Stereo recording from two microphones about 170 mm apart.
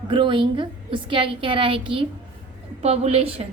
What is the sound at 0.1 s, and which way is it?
A woman's voice, 30° right (ahead or behind).